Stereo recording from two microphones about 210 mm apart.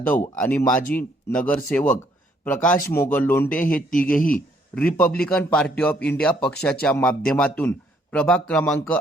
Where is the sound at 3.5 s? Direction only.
40° left (ahead or behind).